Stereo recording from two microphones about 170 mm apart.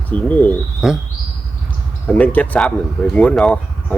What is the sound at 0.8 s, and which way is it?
Speech, centre (ahead or behind).